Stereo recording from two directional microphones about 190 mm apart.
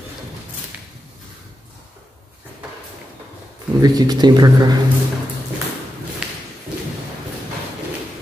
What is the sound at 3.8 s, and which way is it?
Speech, 20° right (ahead or behind).